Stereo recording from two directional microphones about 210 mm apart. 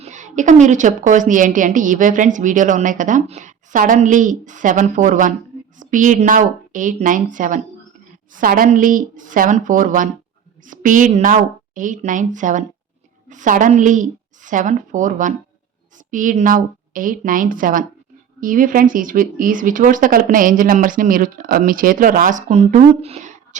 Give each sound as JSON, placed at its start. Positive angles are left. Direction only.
{"t": 0.0, "sound": "a woman's voice", "side_deg": -35}